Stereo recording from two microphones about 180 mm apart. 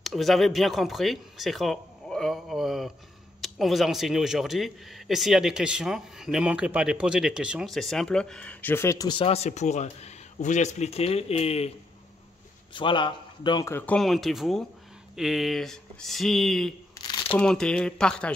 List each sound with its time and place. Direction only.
0.0 s speech: centre (ahead or behind); by 11.7 s 35° left (ahead or behind)
12.7 s speech: 25° left (ahead or behind)
13.7 s speech: 5° left (ahead or behind)